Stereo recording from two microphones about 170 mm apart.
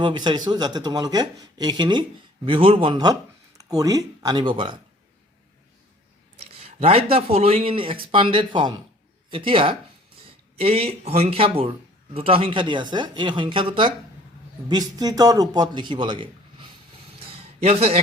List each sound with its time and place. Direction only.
0.0 s speech: 25° right (ahead or behind)
6.4 s speech: 40° right (ahead or behind)